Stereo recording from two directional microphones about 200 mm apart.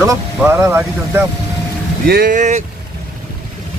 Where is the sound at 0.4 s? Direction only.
10° right (ahead or behind).